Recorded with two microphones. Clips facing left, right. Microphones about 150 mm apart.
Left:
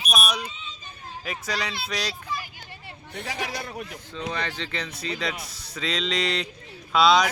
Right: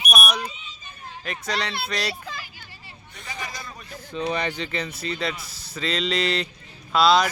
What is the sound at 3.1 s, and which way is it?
Speech, 70° left (ahead or behind).